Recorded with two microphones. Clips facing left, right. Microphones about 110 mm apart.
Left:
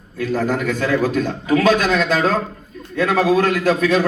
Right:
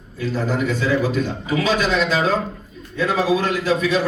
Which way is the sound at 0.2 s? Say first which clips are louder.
Left 2 dB; 50° left (ahead or behind).